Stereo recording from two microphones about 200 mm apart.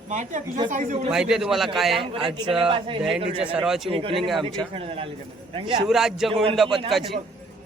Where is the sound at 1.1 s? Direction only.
5° right (ahead or behind).